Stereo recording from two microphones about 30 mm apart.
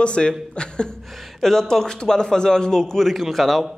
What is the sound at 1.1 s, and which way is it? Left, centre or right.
Speech, centre.